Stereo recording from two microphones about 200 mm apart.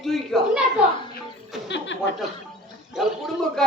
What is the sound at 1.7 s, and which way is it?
Speech, 65° left (ahead or behind).